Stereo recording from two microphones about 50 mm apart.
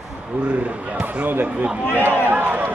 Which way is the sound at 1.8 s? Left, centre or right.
Left.